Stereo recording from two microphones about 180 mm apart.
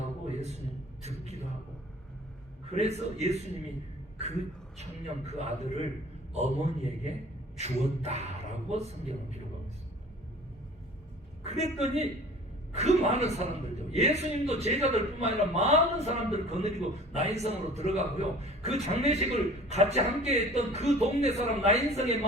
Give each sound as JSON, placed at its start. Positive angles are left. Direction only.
{"t": 2.7, "sound": "a man's voice", "side_deg": -35}
{"t": 4.8, "sound": "a man's voice", "side_deg": -40}
{"t": 11.4, "sound": "a man's voice", "side_deg": -35}